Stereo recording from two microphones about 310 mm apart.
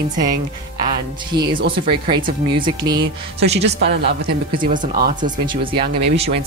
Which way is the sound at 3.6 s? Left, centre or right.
Right.